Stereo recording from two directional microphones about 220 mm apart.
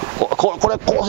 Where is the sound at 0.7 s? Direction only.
10° right (ahead or behind).